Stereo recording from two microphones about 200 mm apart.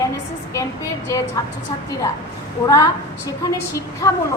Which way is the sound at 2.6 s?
15° left (ahead or behind).